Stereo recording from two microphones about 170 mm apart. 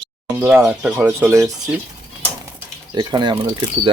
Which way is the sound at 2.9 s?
25° right (ahead or behind).